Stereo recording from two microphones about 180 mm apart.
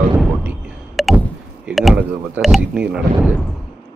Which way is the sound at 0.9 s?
Centre (ahead or behind).